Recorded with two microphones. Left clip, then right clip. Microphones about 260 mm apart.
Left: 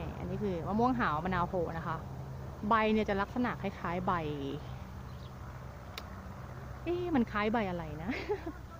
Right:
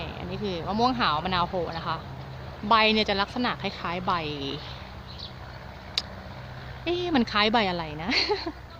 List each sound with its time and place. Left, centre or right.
0.0 s a woman's voice: centre
6.8 s speech: centre